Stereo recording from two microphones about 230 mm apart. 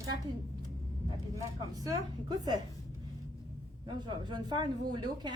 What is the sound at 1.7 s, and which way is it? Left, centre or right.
Speech, centre.